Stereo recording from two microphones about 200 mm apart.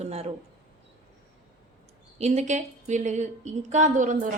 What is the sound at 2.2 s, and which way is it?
A woman's voice, 35° right (ahead or behind).